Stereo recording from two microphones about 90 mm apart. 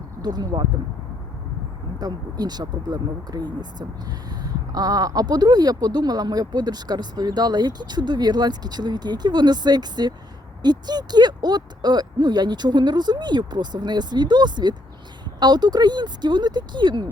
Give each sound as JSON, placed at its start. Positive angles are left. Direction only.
{"t": 0.2, "sound": "speech", "side_deg": -50}
{"t": 2.0, "sound": "speech", "side_deg": -50}